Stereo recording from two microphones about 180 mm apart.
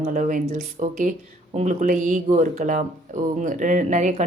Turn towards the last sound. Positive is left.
turn(degrees=-40)  # may be behind; listen again after turning